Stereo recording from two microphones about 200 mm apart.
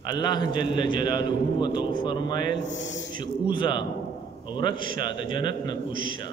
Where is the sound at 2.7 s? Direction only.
65° left (ahead or behind).